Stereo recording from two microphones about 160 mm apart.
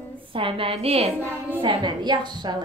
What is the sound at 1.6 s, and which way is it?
A woman's voice, 25° right (ahead or behind).